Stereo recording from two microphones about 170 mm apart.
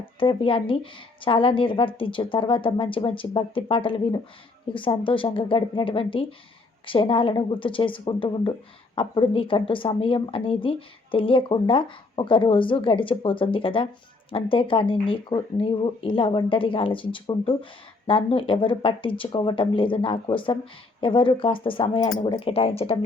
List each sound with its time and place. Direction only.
0.0 s speech: 30° left (ahead or behind)